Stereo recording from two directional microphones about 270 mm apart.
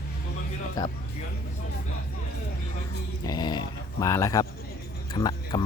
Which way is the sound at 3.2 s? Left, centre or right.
Centre.